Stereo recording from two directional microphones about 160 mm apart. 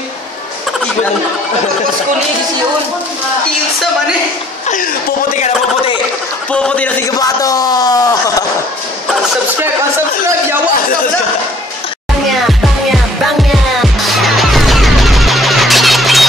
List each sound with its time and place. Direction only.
6.5 s a man's voice: 5° left (ahead or behind)
7.2 s speech: 25° left (ahead or behind)
14.0 s music: centre (ahead or behind)